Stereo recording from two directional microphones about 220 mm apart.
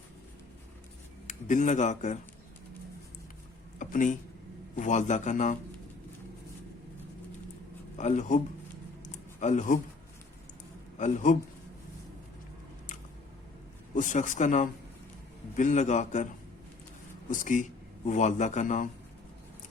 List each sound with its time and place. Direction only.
1.3 s speech: 35° left (ahead or behind)
3.8 s a sound: 35° left (ahead or behind)
4.8 s speech: 35° left (ahead or behind)
7.9 s speech: 30° left (ahead or behind)
9.1 s a sound: 35° left (ahead or behind)
10.9 s a man's voice: 35° left (ahead or behind)
13.9 s speech: 35° left (ahead or behind)
17.3 s speech: 35° left (ahead or behind)